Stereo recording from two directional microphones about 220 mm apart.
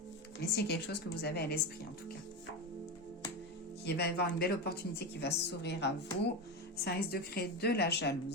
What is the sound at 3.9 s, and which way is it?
A woman's voice, 50° left (ahead or behind).